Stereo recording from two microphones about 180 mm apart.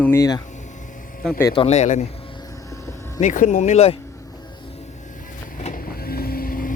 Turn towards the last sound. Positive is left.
turn(degrees=50)  # may be behind; listen again after turning